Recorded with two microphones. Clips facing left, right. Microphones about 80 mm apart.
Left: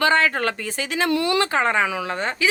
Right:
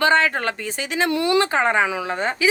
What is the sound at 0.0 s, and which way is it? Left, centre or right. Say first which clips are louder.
A woman's voice: right 1 dB; right.